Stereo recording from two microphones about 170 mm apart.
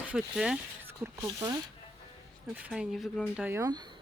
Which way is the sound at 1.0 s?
20° right (ahead or behind).